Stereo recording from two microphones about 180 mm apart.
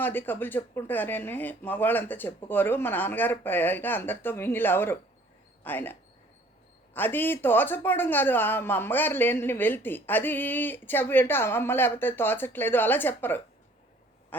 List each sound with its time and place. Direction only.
0.0 s a man's voice: 10° left (ahead or behind)